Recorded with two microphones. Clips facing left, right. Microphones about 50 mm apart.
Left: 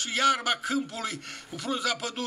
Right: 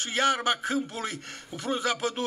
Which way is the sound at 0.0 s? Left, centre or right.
Right.